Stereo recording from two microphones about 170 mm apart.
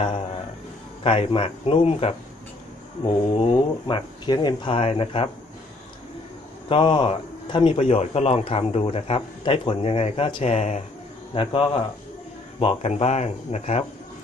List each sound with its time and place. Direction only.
1.0 s speech: 30° left (ahead or behind)
6.7 s speech: 30° left (ahead or behind)